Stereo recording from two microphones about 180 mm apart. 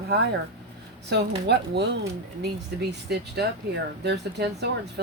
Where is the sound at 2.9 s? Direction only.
65° right (ahead or behind).